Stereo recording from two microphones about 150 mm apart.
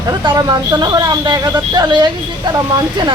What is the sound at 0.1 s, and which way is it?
A woman's voice, 25° right (ahead or behind).